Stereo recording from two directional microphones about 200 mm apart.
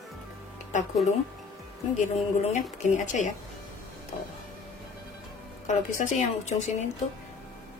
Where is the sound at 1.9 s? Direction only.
35° left (ahead or behind).